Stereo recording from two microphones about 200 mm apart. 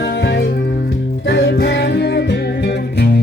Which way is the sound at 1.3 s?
55° left (ahead or behind).